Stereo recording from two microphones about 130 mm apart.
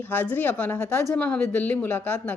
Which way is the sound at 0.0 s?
15° left (ahead or behind).